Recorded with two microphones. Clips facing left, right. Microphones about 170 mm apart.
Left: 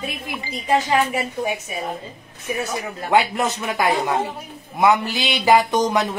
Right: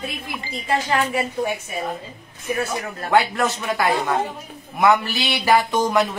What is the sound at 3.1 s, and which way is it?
Speech, 20° left (ahead or behind).